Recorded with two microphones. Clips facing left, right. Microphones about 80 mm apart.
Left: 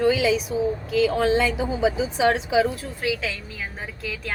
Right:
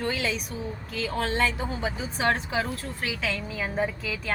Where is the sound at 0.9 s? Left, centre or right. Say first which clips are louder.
Left 8 dB; centre.